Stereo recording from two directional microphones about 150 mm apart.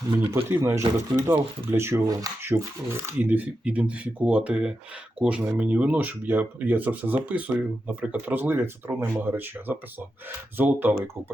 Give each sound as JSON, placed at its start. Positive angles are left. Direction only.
{"t": 0.4, "sound": "speech", "side_deg": -15}